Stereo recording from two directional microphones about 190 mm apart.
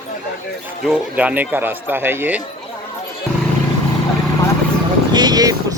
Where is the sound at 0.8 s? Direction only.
5° right (ahead or behind).